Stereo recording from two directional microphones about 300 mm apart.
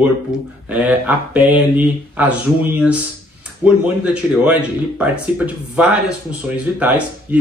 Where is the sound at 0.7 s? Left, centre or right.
Centre.